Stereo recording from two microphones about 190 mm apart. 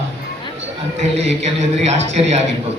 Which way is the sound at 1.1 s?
35° right (ahead or behind).